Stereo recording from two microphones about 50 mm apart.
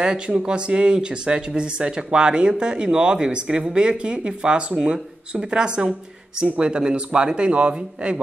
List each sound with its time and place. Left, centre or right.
0.0 s a man's voice: centre